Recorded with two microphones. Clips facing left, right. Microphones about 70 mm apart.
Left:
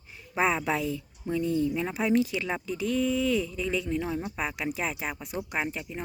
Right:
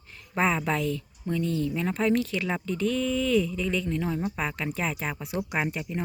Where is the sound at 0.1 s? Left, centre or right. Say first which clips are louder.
Right 1 dB; centre.